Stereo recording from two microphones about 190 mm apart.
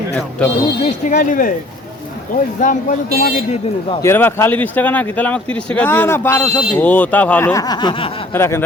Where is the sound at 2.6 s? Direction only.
45° left (ahead or behind).